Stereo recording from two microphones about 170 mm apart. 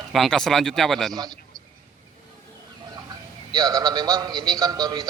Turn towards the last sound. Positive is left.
turn(degrees=-25)  # may be behind; listen again after turning